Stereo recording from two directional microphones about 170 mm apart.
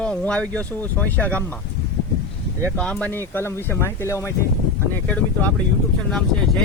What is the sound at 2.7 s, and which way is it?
Speech, 5° left (ahead or behind).